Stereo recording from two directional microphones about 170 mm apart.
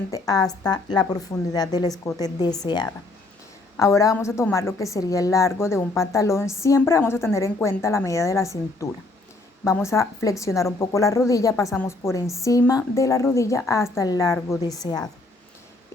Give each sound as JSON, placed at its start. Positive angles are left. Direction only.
{"t": 0.1, "sound": "a woman's voice", "side_deg": 20}
{"t": 3.8, "sound": "a woman's voice", "side_deg": 20}